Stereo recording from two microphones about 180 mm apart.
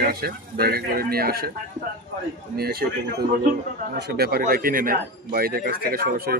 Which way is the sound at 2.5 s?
60° right (ahead or behind).